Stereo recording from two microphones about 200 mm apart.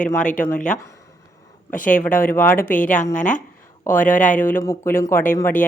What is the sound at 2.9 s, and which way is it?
Speech, 10° left (ahead or behind).